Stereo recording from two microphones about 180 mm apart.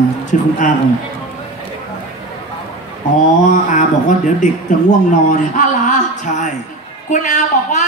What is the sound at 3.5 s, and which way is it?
A woman's voice, 45° left (ahead or behind).